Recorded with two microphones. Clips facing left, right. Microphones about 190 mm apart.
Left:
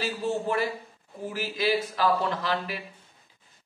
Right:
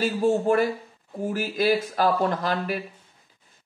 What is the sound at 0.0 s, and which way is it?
Speech, 45° right (ahead or behind).